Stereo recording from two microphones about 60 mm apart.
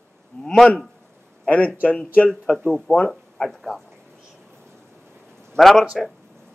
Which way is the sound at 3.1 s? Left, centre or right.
Centre.